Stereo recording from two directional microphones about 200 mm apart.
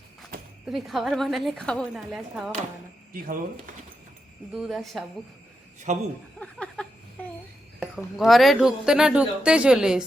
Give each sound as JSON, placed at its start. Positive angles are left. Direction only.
{"t": 0.6, "sound": "speech", "side_deg": 0}
{"t": 3.1, "sound": "speech", "side_deg": -45}
{"t": 4.5, "sound": "speech", "side_deg": 0}
{"t": 5.9, "sound": "a woman's voice", "side_deg": -35}
{"t": 6.4, "sound": "a sound", "side_deg": 5}
{"t": 7.8, "sound": "speech", "side_deg": 0}